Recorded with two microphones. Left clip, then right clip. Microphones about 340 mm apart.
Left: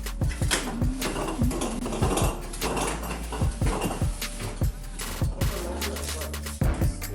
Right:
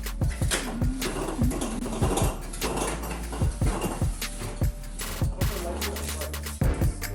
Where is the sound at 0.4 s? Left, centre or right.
Centre.